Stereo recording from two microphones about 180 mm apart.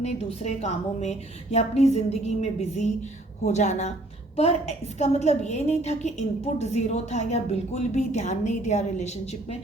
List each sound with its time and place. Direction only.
0.0 s a woman's voice: 35° left (ahead or behind)